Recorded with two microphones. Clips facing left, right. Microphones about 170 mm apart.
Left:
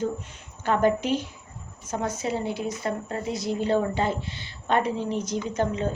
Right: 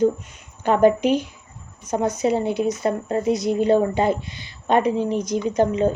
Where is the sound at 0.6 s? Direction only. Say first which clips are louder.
Right 6 dB; 15° right (ahead or behind).